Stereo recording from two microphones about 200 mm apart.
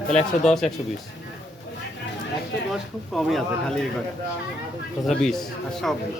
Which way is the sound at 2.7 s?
Centre (ahead or behind).